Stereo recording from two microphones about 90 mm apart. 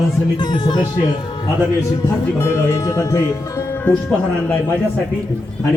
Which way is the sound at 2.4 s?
30° left (ahead or behind).